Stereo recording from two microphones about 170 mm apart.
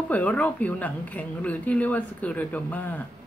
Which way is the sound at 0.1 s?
10° left (ahead or behind).